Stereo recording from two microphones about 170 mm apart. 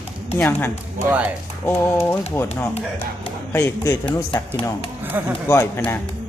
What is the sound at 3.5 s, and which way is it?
Speech, 15° left (ahead or behind).